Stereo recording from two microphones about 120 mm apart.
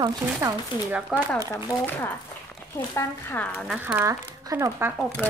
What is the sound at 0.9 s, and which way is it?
Speech, 10° right (ahead or behind).